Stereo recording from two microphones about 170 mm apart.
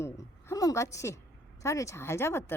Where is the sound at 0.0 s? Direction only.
20° left (ahead or behind).